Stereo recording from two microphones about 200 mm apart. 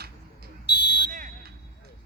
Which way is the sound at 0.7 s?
55° left (ahead or behind).